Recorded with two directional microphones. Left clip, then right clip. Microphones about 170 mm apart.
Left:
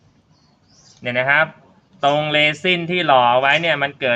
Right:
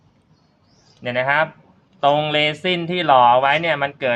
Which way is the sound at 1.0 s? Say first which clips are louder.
Left 2 dB; centre (ahead or behind).